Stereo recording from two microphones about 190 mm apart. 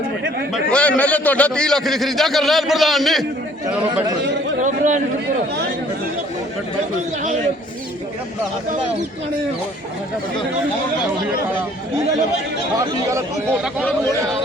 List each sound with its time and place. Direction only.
0.5 s a man's voice: 5° left (ahead or behind)
4.6 s a man's voice: 40° right (ahead or behind)